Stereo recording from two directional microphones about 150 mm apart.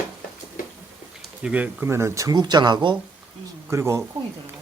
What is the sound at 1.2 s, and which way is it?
Speech, 5° right (ahead or behind).